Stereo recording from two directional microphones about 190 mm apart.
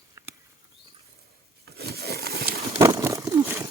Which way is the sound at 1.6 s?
55° right (ahead or behind).